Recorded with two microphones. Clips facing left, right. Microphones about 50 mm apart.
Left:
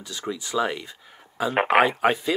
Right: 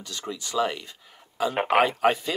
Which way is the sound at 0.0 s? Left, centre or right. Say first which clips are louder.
Left 3 dB; centre.